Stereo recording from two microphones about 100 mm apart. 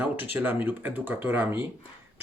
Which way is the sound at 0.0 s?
15° right (ahead or behind).